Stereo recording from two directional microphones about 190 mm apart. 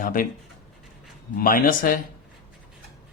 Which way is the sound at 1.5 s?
50° left (ahead or behind).